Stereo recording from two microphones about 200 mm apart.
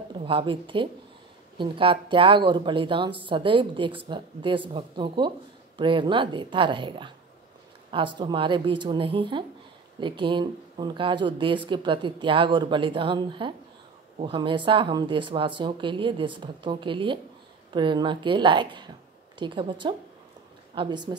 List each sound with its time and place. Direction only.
0.1 s speech: 25° right (ahead or behind)